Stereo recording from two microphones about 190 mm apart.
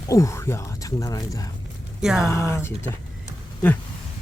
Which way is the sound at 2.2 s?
15° left (ahead or behind).